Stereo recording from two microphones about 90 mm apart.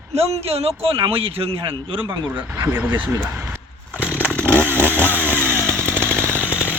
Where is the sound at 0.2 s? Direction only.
90° right.